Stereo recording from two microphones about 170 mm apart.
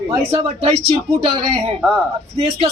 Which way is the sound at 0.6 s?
35° right (ahead or behind).